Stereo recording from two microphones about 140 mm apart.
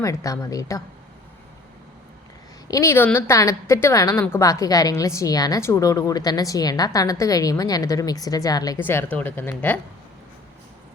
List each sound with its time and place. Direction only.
0.0 s a woman's voice: 25° left (ahead or behind)
2.6 s a woman's voice: 20° left (ahead or behind)
8.8 s a woman's voice: 15° left (ahead or behind)